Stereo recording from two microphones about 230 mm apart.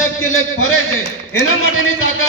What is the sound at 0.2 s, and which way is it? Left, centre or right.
A man's voice, left.